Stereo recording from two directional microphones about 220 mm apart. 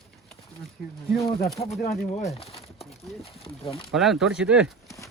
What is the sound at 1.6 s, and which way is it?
Speech, 35° left (ahead or behind).